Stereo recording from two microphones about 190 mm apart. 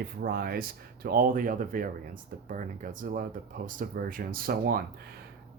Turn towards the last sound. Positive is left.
turn(degrees=-50)  # may be behind; listen again after turning